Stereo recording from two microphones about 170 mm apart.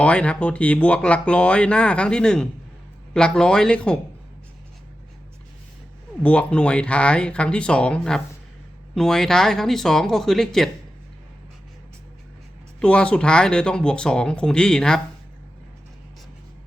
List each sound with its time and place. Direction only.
0.0 s speech: 5° left (ahead or behind)
6.2 s speech: 10° left (ahead or behind)
12.8 s speech: 5° left (ahead or behind)